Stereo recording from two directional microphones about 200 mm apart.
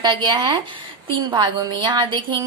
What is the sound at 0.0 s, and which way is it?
A woman's voice, 25° right (ahead or behind).